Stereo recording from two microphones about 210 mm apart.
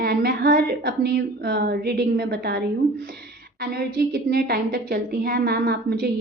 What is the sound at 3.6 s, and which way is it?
A woman's voice, 45° right (ahead or behind).